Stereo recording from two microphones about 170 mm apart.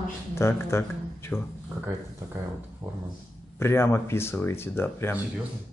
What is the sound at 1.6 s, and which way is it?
Speech, 10° right (ahead or behind).